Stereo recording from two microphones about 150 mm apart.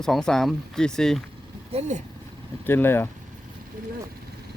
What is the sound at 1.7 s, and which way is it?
Speech, 50° right (ahead or behind).